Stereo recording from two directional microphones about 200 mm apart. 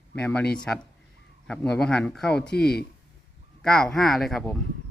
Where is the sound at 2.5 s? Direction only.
50° left (ahead or behind).